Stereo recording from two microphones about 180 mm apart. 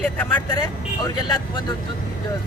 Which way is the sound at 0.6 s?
25° left (ahead or behind).